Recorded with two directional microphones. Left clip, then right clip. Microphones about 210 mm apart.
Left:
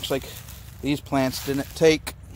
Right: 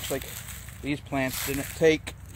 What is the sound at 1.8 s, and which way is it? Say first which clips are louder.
Speech: left 3 dB; 25° left (ahead or behind).